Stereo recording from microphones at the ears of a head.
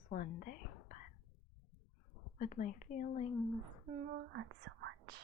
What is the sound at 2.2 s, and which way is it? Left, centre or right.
Speech, left.